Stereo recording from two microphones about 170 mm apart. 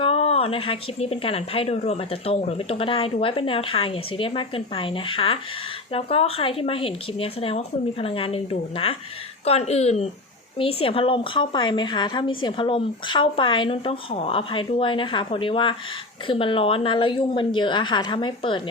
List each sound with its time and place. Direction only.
0.0 s a woman's voice: 35° left (ahead or behind)